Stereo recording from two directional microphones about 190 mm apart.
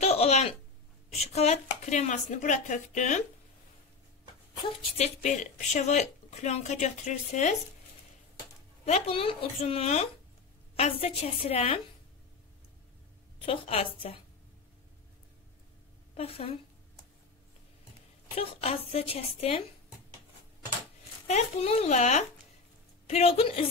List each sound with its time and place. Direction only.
0.0 s a sound: 35° left (ahead or behind)
1.1 s a woman's voice: 35° left (ahead or behind)
4.9 s a woman's voice: 35° left (ahead or behind)
8.8 s a woman's voice: 30° left (ahead or behind)
13.5 s a woman's voice: 30° left (ahead or behind)
16.2 s a woman's voice: 30° left (ahead or behind)
18.3 s a woman's voice: 30° left (ahead or behind)
21.3 s a woman's voice: 35° left (ahead or behind)